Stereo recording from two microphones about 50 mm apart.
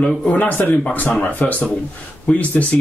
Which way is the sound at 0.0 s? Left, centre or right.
Left.